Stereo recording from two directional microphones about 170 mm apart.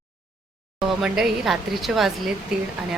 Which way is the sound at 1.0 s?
5° right (ahead or behind).